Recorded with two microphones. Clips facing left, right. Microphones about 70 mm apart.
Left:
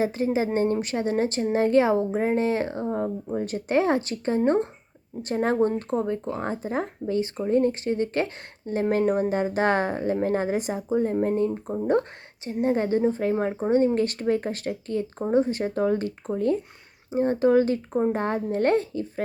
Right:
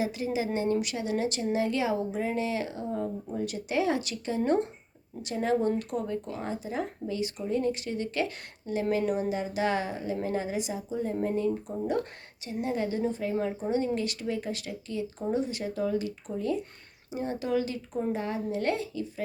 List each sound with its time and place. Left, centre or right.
0.0 s speech: left